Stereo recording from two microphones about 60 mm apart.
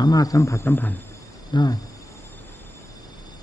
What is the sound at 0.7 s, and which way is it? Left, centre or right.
Speech, left.